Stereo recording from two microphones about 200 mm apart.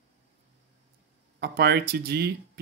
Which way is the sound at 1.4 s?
55° right (ahead or behind).